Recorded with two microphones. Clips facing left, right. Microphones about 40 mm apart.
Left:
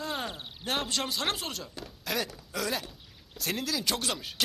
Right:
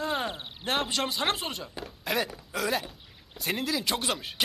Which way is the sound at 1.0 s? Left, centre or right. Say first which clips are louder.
Right 3 dB; centre.